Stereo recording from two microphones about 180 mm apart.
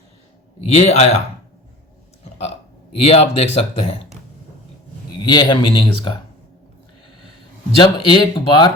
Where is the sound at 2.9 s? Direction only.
35° left (ahead or behind).